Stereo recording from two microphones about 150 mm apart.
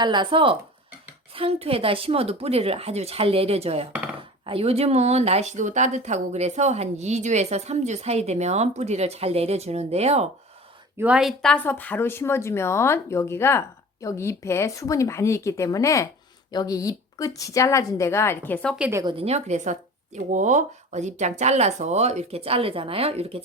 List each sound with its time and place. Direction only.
0.0 s speech: 30° right (ahead or behind)
10.9 s a woman's voice: 10° right (ahead or behind)
11.5 s a woman's voice: 10° left (ahead or behind)
18.8 s a woman's voice: 15° right (ahead or behind)
19.0 s speech: 40° right (ahead or behind)